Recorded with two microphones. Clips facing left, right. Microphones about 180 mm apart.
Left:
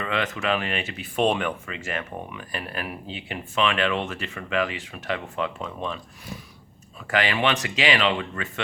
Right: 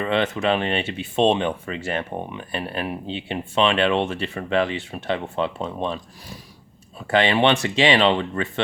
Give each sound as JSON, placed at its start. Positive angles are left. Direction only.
{"t": 0.0, "sound": "speech", "side_deg": -30}